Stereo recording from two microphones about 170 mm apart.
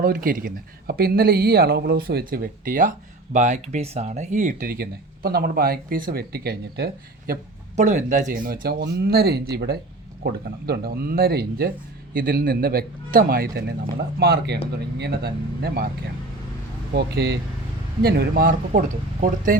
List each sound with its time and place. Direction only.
0.0 s speech: 60° right (ahead or behind)
7.8 s speech: 45° right (ahead or behind); by 15.9 s 70° right (ahead or behind)
16.9 s speech: 70° right (ahead or behind); by 19.6 s 50° right (ahead or behind)